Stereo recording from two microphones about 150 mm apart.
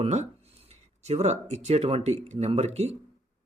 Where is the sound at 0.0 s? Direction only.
45° right (ahead or behind).